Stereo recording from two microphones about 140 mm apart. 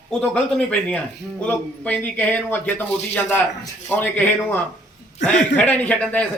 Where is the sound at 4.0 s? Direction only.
10° left (ahead or behind).